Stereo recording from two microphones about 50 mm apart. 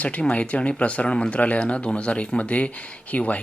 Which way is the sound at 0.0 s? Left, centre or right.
Left.